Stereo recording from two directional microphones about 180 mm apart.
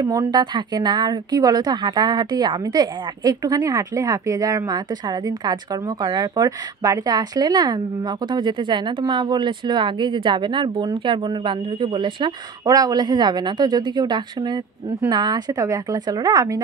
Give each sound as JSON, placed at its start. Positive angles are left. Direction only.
{"t": 0.0, "sound": "a woman's voice", "side_deg": -20}